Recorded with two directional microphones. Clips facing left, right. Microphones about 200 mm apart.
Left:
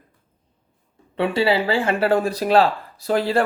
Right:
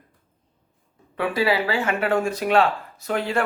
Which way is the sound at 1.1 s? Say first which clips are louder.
Left 3 dB; 25° left (ahead or behind).